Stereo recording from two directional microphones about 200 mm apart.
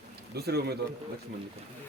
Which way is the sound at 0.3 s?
55° right (ahead or behind).